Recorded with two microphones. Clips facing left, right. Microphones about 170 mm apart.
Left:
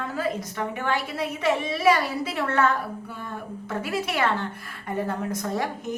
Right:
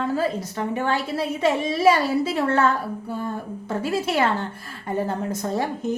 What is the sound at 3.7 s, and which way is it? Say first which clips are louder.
A woman's voice: right 4 dB; 30° right (ahead or behind).